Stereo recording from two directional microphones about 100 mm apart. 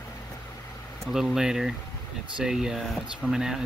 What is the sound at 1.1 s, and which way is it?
Speech, 5° right (ahead or behind).